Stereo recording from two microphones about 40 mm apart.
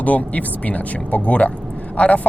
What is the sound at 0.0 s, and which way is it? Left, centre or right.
Speech, left.